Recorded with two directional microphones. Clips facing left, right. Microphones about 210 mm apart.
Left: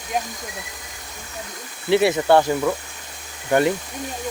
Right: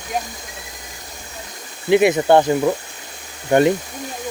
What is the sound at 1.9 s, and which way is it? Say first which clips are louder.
Speech: right 3 dB; 15° right (ahead or behind).